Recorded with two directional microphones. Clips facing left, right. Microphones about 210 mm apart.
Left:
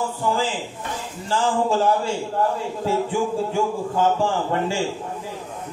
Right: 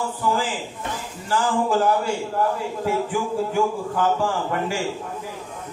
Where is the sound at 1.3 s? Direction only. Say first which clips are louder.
Even; 25° left (ahead or behind).